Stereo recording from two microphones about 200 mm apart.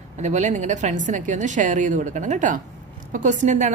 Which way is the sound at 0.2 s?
35° right (ahead or behind).